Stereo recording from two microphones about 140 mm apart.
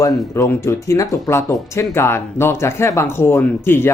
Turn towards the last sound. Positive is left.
turn(degrees=15)  # may be behind; listen again after turning